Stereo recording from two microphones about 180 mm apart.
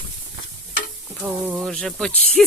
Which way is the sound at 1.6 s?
Centre (ahead or behind).